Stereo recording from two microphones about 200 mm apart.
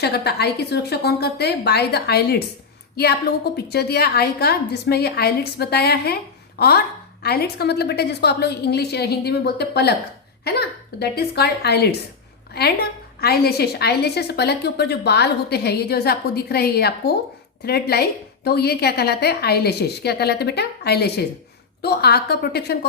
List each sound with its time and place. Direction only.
0.0 s a woman's voice: 55° left (ahead or behind)